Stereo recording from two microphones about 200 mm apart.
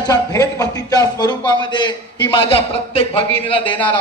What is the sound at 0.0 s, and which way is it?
Speech, 15° left (ahead or behind).